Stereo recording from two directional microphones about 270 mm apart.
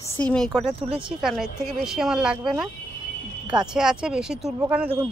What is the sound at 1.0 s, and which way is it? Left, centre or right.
Speech, centre.